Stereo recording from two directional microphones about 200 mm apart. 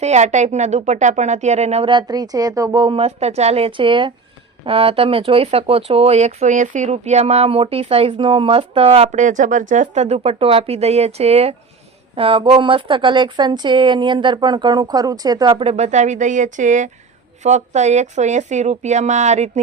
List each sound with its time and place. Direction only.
0.0 s speech: 35° right (ahead or behind)